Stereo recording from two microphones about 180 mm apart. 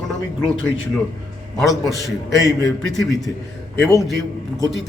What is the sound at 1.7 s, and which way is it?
Speech, 15° left (ahead or behind).